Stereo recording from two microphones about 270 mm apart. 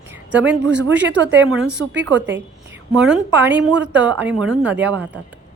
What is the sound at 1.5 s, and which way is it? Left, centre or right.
Speech, centre.